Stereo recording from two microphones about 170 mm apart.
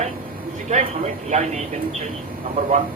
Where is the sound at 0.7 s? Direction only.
45° right (ahead or behind).